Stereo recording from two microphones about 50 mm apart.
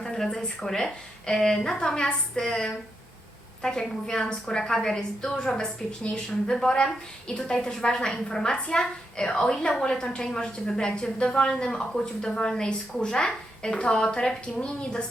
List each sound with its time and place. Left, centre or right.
0.0 s a woman's voice: centre